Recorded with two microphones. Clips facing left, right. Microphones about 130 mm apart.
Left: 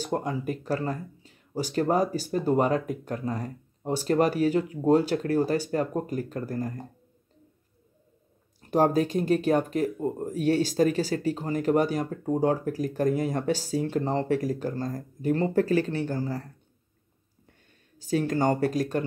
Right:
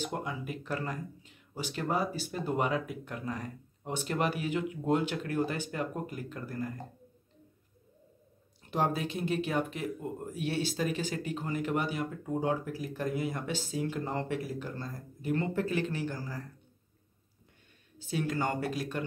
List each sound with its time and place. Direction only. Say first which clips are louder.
0.0 s speech: left 7 dB; 40° left (ahead or behind)
8.5 s speech: left 9 dB; 45° left (ahead or behind)
17.9 s speech: left 7 dB; 40° left (ahead or behind)